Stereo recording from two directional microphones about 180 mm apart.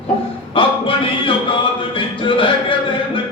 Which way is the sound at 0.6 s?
30° left (ahead or behind).